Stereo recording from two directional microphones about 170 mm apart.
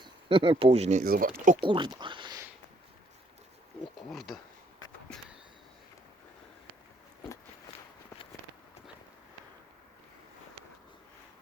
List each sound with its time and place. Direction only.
0.0 s speech: 30° right (ahead or behind)
1.0 s speech: 60° right (ahead or behind)
1.6 s speech: 30° right (ahead or behind)
4.1 s speech: centre (ahead or behind)